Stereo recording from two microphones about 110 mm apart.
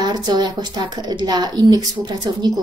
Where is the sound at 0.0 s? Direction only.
40° right (ahead or behind).